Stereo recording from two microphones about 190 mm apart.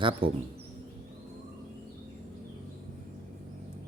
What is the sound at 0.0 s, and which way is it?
Speech, 30° right (ahead or behind).